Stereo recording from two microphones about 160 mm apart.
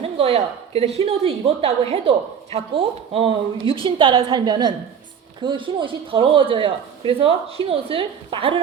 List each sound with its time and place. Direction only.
0.0 s a woman's voice: 40° right (ahead or behind)